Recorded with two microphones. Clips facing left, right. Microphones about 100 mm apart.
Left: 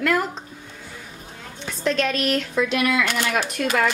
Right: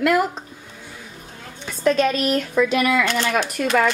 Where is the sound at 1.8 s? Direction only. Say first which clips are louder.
Right 4 dB; 5° right (ahead or behind).